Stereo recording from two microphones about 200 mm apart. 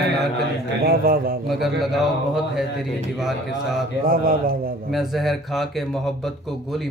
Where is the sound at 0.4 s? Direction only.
50° right (ahead or behind).